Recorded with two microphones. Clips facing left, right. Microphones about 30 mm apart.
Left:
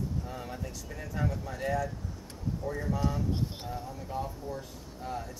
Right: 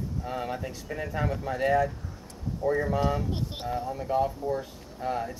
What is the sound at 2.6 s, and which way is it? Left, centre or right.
Speech, right.